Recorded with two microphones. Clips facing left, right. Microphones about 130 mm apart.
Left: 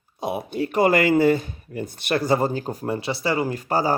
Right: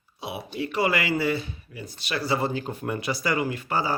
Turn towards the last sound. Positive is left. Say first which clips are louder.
# left 4 dB
turn(degrees=40)  # may be behind; listen again after turning